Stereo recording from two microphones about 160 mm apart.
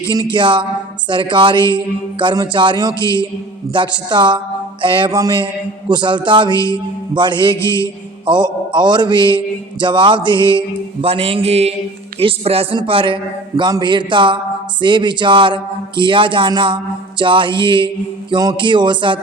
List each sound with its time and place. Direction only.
0.1 s a man's voice: 25° right (ahead or behind)
7.5 s a man's voice: 15° left (ahead or behind)
8.3 s a man's voice: 30° right (ahead or behind)